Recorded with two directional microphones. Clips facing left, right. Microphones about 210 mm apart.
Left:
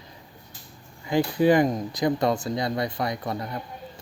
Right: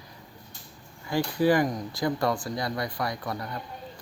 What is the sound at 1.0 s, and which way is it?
Speech, 20° left (ahead or behind).